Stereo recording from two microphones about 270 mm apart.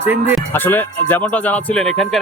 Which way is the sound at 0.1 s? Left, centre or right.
Centre.